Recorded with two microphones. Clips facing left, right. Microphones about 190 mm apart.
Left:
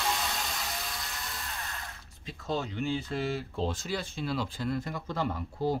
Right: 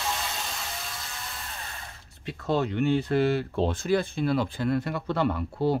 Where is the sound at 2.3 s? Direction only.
65° right (ahead or behind).